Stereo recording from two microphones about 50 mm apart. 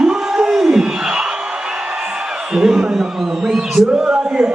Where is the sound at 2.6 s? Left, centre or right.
Centre.